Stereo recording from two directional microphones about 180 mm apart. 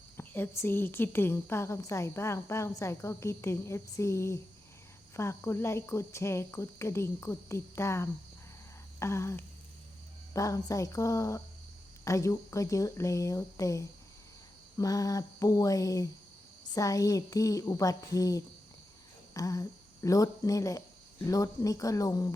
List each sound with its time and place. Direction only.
0.2 s a woman's voice: 10° left (ahead or behind)
9.0 s a sound: 15° left (ahead or behind)
10.3 s a woman's voice: 20° left (ahead or behind)